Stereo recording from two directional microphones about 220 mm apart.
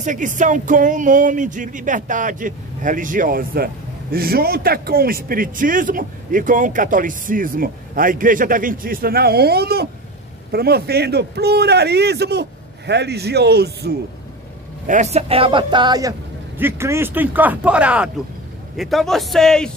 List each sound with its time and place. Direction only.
0.0 s music: 35° right (ahead or behind)
10.5 s a man's voice: 45° right (ahead or behind)
14.9 s a man's voice: 30° right (ahead or behind); by 19.7 s centre (ahead or behind)